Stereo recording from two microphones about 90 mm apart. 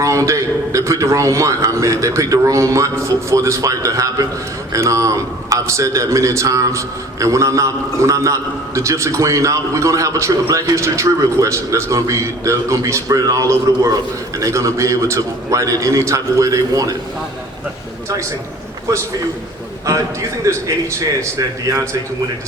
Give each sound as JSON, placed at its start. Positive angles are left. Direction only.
{"t": 0.0, "sound": "a man's voice", "side_deg": -35}
{"t": 19.9, "sound": "a man's voice", "side_deg": -35}